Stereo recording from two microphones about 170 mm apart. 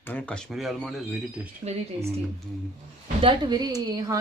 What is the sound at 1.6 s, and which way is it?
Speech, 40° right (ahead or behind).